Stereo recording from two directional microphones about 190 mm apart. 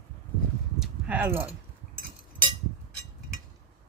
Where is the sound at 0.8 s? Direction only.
5° right (ahead or behind).